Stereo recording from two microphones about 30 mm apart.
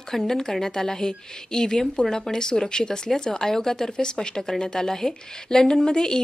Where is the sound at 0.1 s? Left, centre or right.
Centre.